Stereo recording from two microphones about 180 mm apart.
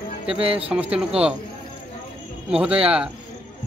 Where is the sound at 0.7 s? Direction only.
5° right (ahead or behind).